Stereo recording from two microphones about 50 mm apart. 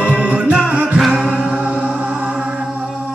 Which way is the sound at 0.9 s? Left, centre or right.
Centre.